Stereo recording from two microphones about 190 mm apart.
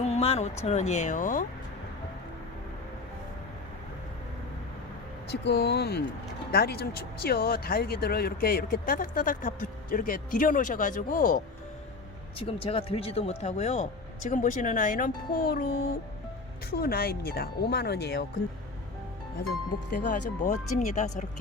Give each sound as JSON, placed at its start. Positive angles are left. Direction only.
{"t": 0.0, "sound": "a sound", "side_deg": 35}
{"t": 0.6, "sound": "speech", "side_deg": 35}
{"t": 5.3, "sound": "speech", "side_deg": 60}
{"t": 12.4, "sound": "speech", "side_deg": 30}
{"t": 16.8, "sound": "speech", "side_deg": 55}
{"t": 19.9, "sound": "speech", "side_deg": 40}